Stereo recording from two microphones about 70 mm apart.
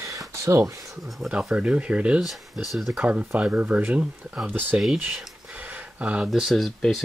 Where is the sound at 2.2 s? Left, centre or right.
Centre.